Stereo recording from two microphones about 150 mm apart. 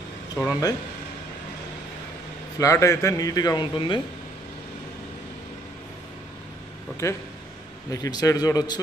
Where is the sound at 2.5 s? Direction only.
20° left (ahead or behind).